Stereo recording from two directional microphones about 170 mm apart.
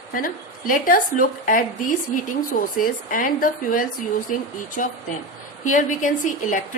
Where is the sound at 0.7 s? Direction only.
55° left (ahead or behind).